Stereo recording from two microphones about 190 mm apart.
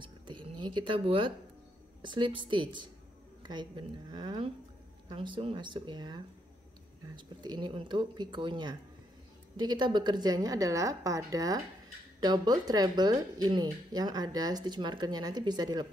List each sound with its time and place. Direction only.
0.0 s speech: 25° right (ahead or behind)